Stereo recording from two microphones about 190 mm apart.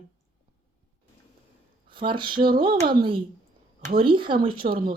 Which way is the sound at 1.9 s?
25° right (ahead or behind).